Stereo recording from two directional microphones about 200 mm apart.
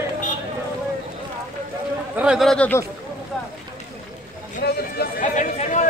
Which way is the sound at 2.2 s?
Centre (ahead or behind).